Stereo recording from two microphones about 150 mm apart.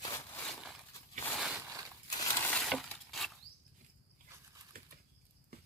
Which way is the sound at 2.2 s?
15° left (ahead or behind).